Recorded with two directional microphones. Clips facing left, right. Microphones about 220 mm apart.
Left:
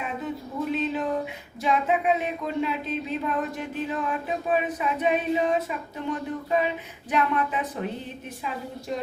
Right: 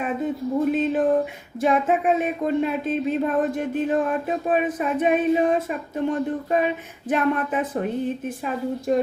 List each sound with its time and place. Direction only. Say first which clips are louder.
0.6 s speech: right 5 dB; 50° right (ahead or behind)
7.1 s speech: right 4 dB; 50° right (ahead or behind)
8.9 s speech: right 11 dB; 50° right (ahead or behind)